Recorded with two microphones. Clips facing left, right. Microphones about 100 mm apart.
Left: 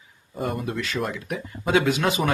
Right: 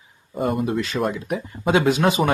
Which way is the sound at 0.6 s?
20° right (ahead or behind).